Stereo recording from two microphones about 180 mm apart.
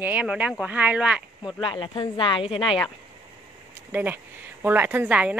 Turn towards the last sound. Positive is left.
turn(degrees=-10)  # may be behind; listen again after turning